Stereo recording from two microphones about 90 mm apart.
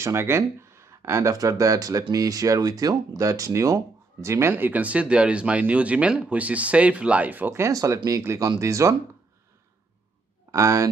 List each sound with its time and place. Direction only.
0.0 s speech: 30° right (ahead or behind)
7.7 s speech: 40° right (ahead or behind)
10.5 s speech: 35° right (ahead or behind)